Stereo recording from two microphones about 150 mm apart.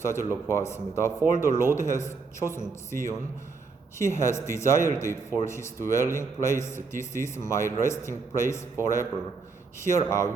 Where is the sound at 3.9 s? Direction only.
20° left (ahead or behind).